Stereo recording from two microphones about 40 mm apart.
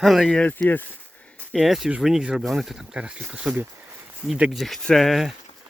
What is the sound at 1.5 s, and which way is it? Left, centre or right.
Speech, centre.